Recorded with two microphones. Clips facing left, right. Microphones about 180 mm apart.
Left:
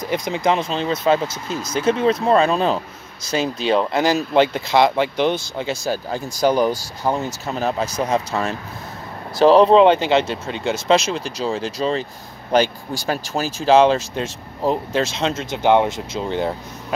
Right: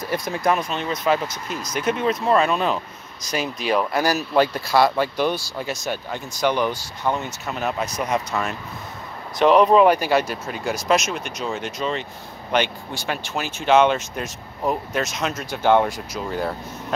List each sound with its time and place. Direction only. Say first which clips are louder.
0.0 s speech: left 2 dB; 20° left (ahead or behind)
5.9 s speech: left 4 dB; 35° left (ahead or behind)